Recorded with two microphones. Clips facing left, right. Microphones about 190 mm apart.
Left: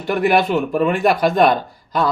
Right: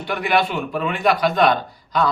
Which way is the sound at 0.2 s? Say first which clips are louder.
Left 5 dB; 45° left (ahead or behind).